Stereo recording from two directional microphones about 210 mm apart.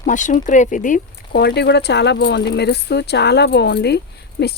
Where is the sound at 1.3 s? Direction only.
50° left (ahead or behind).